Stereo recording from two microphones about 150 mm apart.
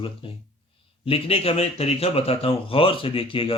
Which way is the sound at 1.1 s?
40° left (ahead or behind).